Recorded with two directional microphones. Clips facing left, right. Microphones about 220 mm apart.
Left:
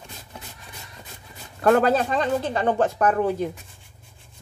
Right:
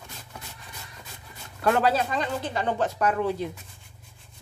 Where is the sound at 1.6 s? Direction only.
50° left (ahead or behind).